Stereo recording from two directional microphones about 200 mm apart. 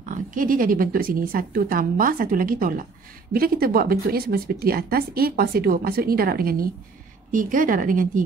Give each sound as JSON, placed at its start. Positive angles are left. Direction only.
{"t": 0.1, "sound": "a woman's voice", "side_deg": -40}